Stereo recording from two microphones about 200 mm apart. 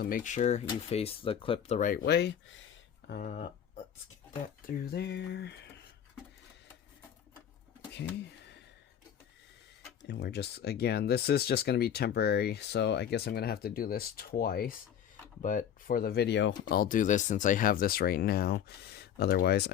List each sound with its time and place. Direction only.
0.0 s speech: 40° left (ahead or behind)
3.1 s speech: 45° left (ahead or behind)
4.6 s speech: 55° left (ahead or behind)
10.1 s speech: 55° left (ahead or behind)